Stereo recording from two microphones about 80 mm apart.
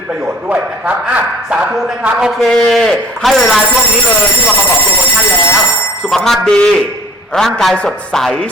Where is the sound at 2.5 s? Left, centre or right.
Centre.